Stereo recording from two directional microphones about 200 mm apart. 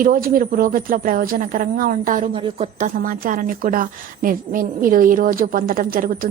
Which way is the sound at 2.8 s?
40° right (ahead or behind).